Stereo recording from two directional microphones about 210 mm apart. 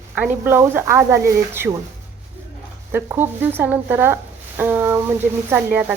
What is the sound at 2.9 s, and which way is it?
Speech, 10° right (ahead or behind).